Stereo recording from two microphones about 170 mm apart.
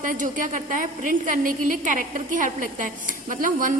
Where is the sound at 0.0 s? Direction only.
50° right (ahead or behind).